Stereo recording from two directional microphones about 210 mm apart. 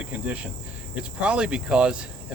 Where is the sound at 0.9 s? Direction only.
5° right (ahead or behind).